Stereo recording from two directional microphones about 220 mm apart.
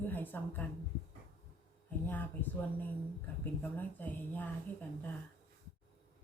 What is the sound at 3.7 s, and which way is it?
Speech, 10° left (ahead or behind).